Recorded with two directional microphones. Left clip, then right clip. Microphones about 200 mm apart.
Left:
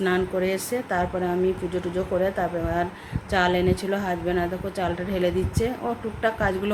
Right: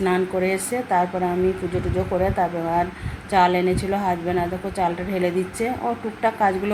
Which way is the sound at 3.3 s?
25° left (ahead or behind).